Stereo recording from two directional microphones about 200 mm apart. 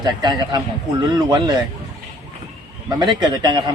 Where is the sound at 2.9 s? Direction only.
20° right (ahead or behind).